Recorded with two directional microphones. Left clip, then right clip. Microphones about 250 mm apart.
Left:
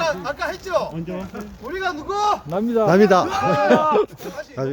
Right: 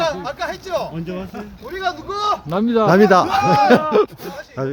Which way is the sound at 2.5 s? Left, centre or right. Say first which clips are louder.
Right 3 dB; right.